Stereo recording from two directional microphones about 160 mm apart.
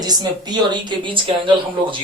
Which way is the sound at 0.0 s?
25° right (ahead or behind).